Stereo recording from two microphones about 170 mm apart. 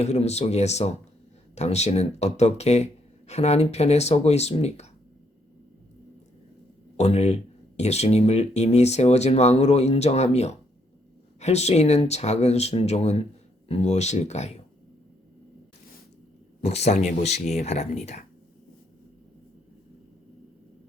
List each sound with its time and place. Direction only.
0.0 s speech: 40° left (ahead or behind)
6.9 s speech: 40° left (ahead or behind)
16.6 s speech: 40° left (ahead or behind)